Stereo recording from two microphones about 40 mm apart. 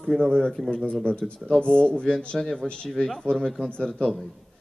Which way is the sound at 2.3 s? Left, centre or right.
Centre.